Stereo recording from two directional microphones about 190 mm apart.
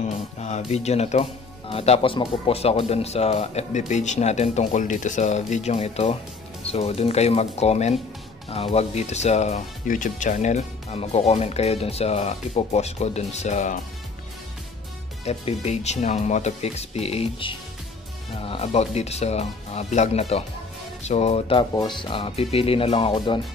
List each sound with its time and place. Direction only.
0.0 s music: 35° left (ahead or behind)
1.7 s speech: 30° left (ahead or behind)
15.2 s speech: 35° left (ahead or behind)